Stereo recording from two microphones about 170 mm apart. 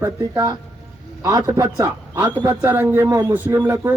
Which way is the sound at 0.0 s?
25° right (ahead or behind).